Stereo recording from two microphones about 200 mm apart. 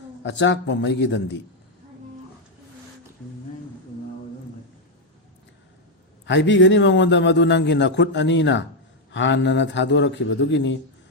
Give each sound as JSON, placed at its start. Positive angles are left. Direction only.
{"t": 0.2, "sound": "a man's voice", "side_deg": 65}
{"t": 6.2, "sound": "a man's voice", "side_deg": 65}